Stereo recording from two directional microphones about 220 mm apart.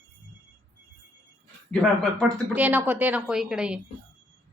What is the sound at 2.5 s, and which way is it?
A woman's voice, 5° right (ahead or behind).